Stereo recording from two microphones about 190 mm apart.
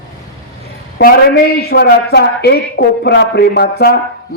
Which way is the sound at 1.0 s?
55° left (ahead or behind).